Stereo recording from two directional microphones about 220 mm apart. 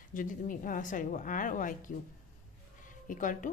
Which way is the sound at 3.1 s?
35° left (ahead or behind).